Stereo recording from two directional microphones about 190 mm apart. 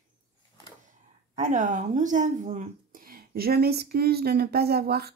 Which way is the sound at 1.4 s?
45° right (ahead or behind).